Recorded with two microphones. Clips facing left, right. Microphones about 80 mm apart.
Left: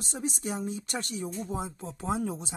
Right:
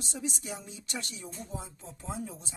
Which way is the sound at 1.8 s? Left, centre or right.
Left.